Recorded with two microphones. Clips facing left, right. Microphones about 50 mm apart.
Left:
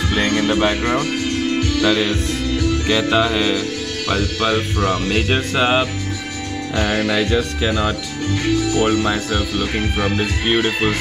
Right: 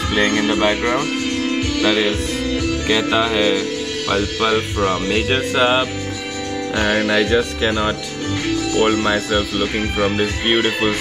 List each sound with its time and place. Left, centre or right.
0.4 s speech: centre
5.1 s speech: centre
6.7 s speech: right
8.7 s speech: right
9.9 s speech: centre